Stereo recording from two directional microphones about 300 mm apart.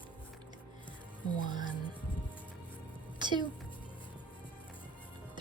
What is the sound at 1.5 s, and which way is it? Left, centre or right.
Speech, centre.